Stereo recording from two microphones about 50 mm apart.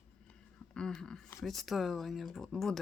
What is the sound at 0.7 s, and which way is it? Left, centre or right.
Speech, centre.